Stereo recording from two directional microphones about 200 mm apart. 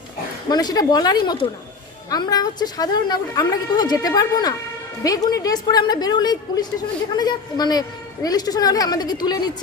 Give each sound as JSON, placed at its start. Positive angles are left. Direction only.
{"t": 0.5, "sound": "a woman's voice", "side_deg": 20}